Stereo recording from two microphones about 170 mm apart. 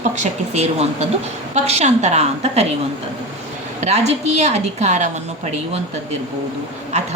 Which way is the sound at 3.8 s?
40° right (ahead or behind).